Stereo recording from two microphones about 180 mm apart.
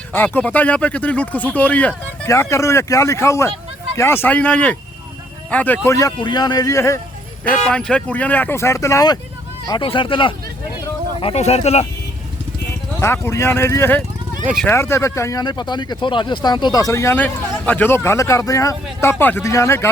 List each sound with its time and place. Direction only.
0.1 s speech: 10° left (ahead or behind)
7.7 s speech: 5° left (ahead or behind); by 11.9 s 35° left (ahead or behind)
13.0 s speech: 15° left (ahead or behind)